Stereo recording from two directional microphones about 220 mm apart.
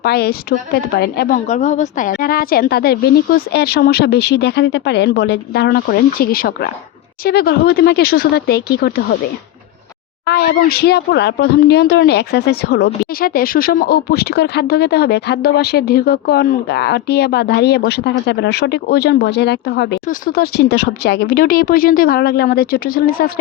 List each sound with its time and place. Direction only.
0.0 s speech: 45° left (ahead or behind)
1.5 s speech: 35° left (ahead or behind)
10.2 s speech: 45° left (ahead or behind)